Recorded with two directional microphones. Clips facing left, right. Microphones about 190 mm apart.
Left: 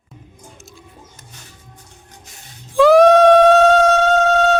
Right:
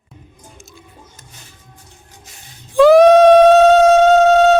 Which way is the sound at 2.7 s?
Centre (ahead or behind).